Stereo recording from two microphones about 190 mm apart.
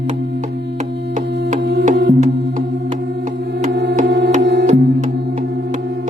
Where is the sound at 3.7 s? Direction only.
65° right (ahead or behind).